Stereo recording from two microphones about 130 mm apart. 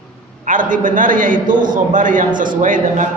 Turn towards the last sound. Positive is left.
turn(degrees=-85)